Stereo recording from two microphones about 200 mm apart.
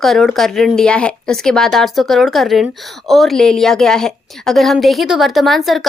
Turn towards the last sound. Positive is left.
turn(degrees=0)  # may be behind; listen again after turning